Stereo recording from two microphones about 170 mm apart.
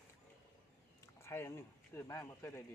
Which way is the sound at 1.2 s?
15° left (ahead or behind).